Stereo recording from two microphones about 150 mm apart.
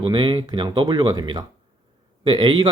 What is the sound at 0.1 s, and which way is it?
Speech, 30° right (ahead or behind).